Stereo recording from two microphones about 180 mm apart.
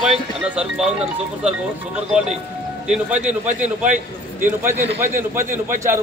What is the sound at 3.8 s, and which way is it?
Speech, 45° right (ahead or behind).